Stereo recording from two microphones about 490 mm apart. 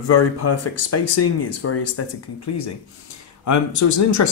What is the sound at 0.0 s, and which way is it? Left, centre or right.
A man's voice, left.